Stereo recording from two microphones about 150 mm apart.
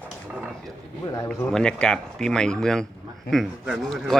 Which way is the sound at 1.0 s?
25° left (ahead or behind).